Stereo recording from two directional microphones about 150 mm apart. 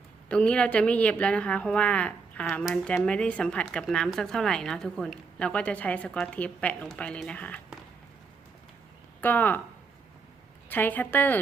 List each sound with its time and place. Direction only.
0.3 s speech: 5° left (ahead or behind)
9.2 s speech: 10° left (ahead or behind)
10.7 s speech: 10° left (ahead or behind)